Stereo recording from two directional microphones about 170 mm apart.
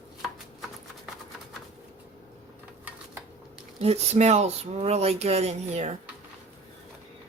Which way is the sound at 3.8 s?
40° right (ahead or behind).